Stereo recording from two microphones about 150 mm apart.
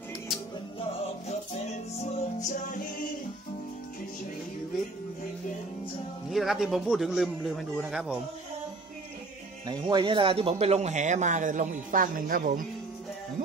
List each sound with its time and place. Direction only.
2.0 s music: 50° left (ahead or behind)
6.3 s a man's voice: centre (ahead or behind)
9.7 s speech: 30° right (ahead or behind); by 12.6 s 70° right (ahead or behind)